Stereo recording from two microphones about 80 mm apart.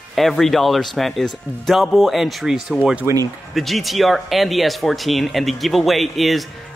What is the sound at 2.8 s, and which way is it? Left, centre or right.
Speech, centre.